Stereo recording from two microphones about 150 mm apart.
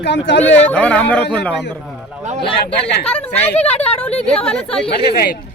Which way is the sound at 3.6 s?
45° left (ahead or behind).